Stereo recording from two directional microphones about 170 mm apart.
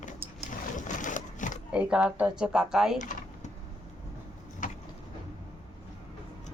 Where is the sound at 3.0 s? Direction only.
45° left (ahead or behind).